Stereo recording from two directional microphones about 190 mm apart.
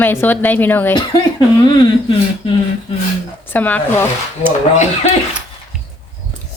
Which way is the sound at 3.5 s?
10° left (ahead or behind).